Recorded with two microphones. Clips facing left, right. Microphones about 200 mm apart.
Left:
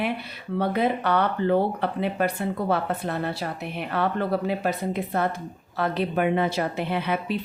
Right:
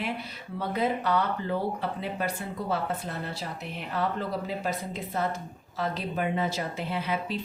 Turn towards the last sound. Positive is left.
turn(degrees=65)  # may be behind; listen again after turning